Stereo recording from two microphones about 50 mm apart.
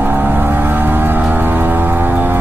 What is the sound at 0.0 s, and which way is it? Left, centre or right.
Vehicle, right.